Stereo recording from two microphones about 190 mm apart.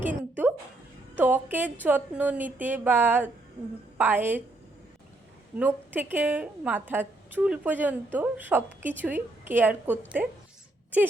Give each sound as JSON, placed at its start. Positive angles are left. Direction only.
{"t": 0.0, "sound": "a sound", "side_deg": -10}
{"t": 1.1, "sound": "a woman's voice", "side_deg": -10}
{"t": 5.5, "sound": "a woman's voice", "side_deg": -10}